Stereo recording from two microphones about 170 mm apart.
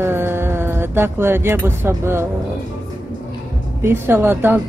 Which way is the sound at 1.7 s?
15° right (ahead or behind).